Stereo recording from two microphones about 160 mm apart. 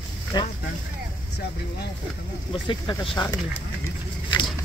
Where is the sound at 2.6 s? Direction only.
30° left (ahead or behind).